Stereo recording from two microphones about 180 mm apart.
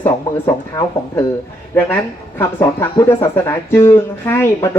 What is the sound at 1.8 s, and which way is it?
A woman's voice, 15° left (ahead or behind).